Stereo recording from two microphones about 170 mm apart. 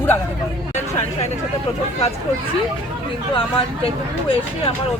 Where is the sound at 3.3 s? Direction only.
30° left (ahead or behind).